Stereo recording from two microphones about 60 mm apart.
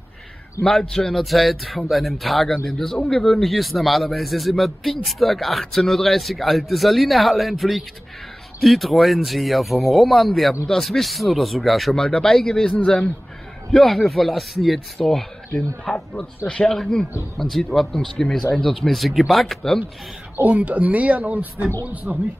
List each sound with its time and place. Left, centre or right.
0.7 s a man's voice: centre
13.7 s a man's voice: centre
20.4 s speech: right